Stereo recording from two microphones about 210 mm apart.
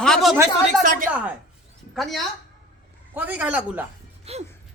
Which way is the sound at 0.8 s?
40° right (ahead or behind).